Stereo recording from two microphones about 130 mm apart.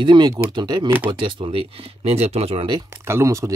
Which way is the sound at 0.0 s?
35° right (ahead or behind).